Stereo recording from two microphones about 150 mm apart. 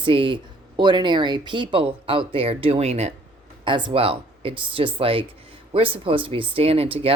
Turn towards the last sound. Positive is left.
turn(degrees=-40)  # may be behind; listen again after turning